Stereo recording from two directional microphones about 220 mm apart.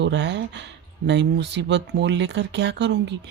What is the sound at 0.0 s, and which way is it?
Speech, 55° right (ahead or behind).